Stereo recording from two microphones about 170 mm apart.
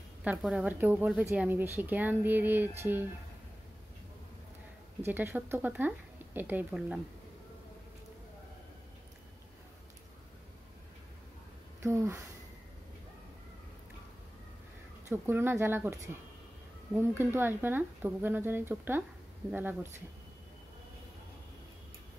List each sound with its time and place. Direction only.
0.2 s speech: 5° right (ahead or behind)
5.0 s speech: 10° right (ahead or behind)
11.8 s speech: 15° right (ahead or behind)
15.0 s speech: 15° right (ahead or behind)